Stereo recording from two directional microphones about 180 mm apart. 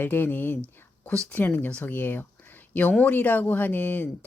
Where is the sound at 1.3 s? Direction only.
10° left (ahead or behind).